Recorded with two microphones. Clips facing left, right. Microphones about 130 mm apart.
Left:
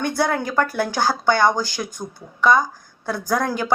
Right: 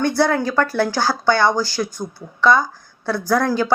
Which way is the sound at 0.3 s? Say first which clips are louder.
Right 2 dB; 20° left (ahead or behind).